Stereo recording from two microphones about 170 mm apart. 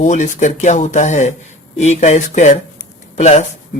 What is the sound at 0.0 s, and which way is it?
Speech, 45° left (ahead or behind).